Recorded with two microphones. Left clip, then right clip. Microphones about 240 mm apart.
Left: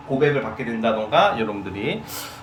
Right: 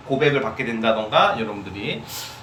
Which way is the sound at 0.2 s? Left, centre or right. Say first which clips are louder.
Even; centre.